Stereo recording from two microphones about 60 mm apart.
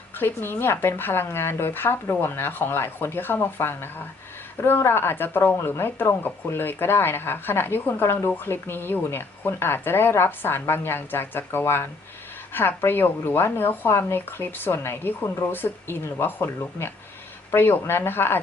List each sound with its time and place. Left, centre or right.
0.2 s speech: left